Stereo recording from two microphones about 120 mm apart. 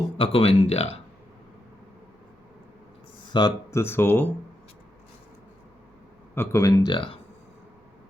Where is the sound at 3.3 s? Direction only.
35° left (ahead or behind).